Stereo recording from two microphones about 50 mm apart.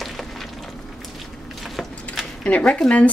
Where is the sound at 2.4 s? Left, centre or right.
Centre.